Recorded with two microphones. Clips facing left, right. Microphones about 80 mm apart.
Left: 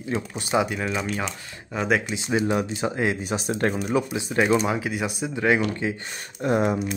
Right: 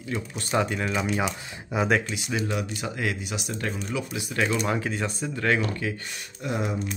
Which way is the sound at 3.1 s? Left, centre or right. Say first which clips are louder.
Left 6 dB; left.